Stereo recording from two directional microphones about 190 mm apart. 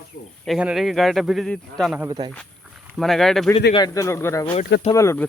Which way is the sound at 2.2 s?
20° right (ahead or behind).